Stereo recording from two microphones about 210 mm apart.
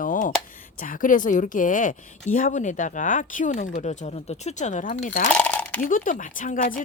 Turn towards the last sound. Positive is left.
turn(degrees=40)  # may be behind; listen again after turning